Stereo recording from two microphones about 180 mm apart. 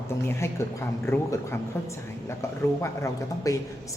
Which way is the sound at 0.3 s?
15° left (ahead or behind).